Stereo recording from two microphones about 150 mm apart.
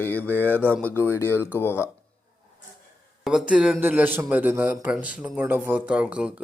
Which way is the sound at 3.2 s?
5° right (ahead or behind).